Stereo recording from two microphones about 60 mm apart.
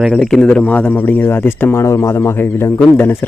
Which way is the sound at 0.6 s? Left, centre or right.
Left.